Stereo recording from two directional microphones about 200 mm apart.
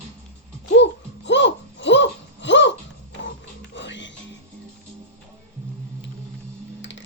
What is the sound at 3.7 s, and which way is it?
Music, 65° left (ahead or behind).